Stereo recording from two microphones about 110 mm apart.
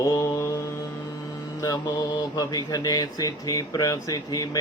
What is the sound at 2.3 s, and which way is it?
Speech, 35° left (ahead or behind).